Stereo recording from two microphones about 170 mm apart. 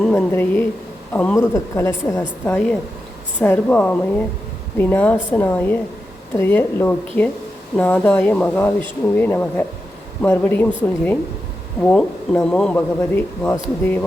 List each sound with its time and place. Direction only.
0.0 s speech: 5° left (ahead or behind)
2.4 s speech: 10° left (ahead or behind)